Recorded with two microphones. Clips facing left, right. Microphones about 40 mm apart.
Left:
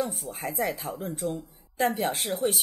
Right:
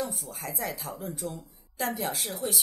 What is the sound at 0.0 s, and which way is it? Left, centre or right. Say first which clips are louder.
Speech: left 4 dB; left.